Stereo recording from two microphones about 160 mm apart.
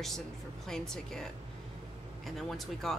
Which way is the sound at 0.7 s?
5° left (ahead or behind).